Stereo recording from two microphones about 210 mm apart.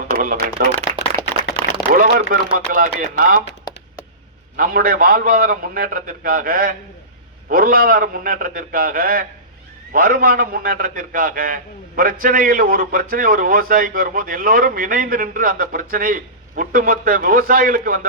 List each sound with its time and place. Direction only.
0.2 s speech: 40° right (ahead or behind)
0.9 s clapping: 35° right (ahead or behind)
1.9 s speech: 40° right (ahead or behind)
4.5 s a man's voice: 45° right (ahead or behind)